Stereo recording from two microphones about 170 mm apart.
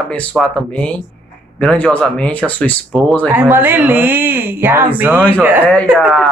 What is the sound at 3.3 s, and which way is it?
Speech, 10° right (ahead or behind).